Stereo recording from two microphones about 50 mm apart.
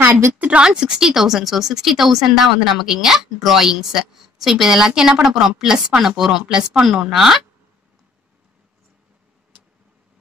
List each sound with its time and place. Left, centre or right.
0.4 s a woman's voice: right
0.7 s speech: centre